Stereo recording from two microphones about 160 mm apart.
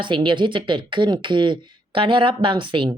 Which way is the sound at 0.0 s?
30° right (ahead or behind).